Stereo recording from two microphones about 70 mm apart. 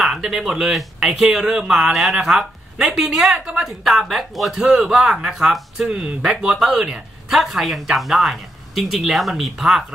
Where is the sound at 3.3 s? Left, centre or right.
Centre.